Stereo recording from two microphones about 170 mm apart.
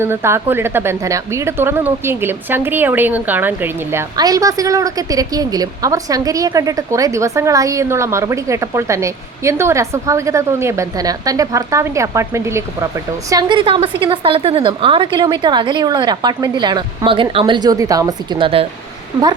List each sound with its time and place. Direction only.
0.0 s a woman's voice: 15° right (ahead or behind)
13.3 s a woman's voice: 30° right (ahead or behind)